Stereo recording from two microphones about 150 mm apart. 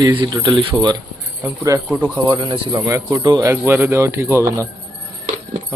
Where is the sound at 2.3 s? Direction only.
30° right (ahead or behind).